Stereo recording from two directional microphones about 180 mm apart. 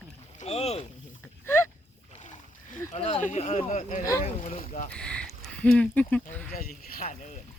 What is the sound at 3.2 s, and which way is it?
Speech, 35° left (ahead or behind).